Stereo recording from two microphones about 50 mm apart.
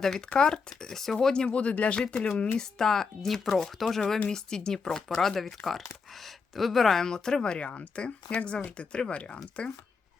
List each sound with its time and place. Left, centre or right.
0.3 s speech: centre